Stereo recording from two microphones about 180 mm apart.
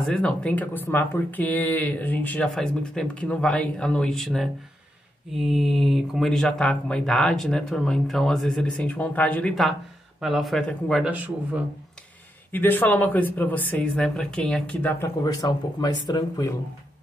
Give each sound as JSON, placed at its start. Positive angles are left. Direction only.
{"t": 0.0, "sound": "speech", "side_deg": 5}
{"t": 12.4, "sound": "speech", "side_deg": 10}
{"t": 15.2, "sound": "speech", "side_deg": 20}